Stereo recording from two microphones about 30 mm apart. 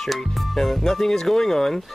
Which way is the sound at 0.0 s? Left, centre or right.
Centre.